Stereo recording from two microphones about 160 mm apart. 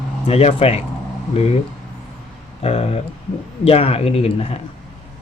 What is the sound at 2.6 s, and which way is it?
Speech, 40° left (ahead or behind).